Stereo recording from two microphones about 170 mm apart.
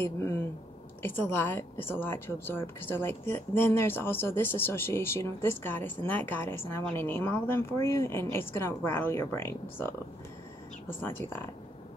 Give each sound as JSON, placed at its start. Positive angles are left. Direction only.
{"t": 0.0, "sound": "speech", "side_deg": 15}
{"t": 11.0, "sound": "speech", "side_deg": 10}